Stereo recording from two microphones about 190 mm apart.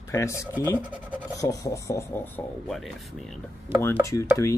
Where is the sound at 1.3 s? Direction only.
15° left (ahead or behind); by 3.4 s centre (ahead or behind).